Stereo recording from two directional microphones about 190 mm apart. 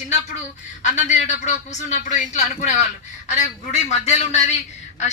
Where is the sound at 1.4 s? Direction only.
40° left (ahead or behind).